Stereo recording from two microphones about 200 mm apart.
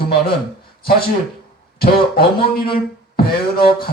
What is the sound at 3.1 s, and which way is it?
Beatboxing, 50° left (ahead or behind).